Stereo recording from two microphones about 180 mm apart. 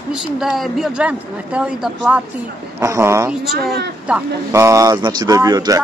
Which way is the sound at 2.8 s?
15° right (ahead or behind).